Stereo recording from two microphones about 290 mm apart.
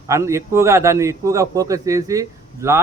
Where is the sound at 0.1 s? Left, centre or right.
Centre.